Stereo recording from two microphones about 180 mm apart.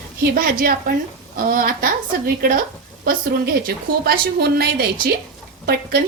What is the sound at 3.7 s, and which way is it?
A woman's voice, 55° right (ahead or behind).